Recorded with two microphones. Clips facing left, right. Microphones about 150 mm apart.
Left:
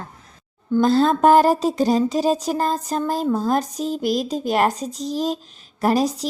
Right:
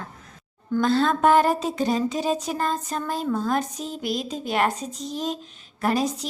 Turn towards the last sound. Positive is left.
turn(degrees=35)  # may be behind; listen again after turning